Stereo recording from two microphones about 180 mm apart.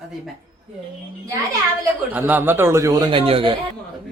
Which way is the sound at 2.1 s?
10° right (ahead or behind).